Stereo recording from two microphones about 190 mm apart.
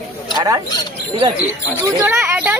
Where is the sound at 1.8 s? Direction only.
10° right (ahead or behind).